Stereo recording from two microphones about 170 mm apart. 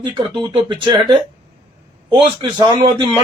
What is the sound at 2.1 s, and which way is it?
Speech, 25° right (ahead or behind).